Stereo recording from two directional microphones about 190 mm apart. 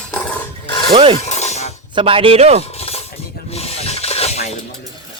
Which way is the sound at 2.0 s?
30° right (ahead or behind).